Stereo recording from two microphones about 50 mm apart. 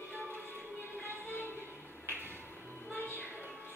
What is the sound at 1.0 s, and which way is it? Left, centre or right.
Music, left.